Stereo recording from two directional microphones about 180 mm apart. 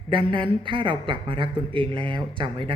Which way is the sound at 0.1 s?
25° right (ahead or behind).